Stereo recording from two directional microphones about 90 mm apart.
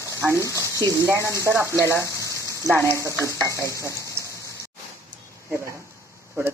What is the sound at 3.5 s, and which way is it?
Frying, 35° right (ahead or behind).